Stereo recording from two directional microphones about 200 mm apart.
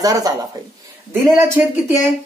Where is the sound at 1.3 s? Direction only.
10° right (ahead or behind).